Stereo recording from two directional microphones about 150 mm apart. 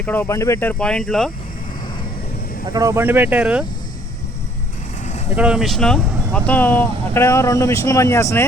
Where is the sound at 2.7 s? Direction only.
20° right (ahead or behind).